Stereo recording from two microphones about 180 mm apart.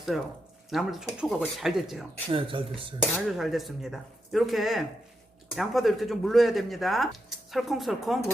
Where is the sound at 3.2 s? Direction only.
Centre (ahead or behind).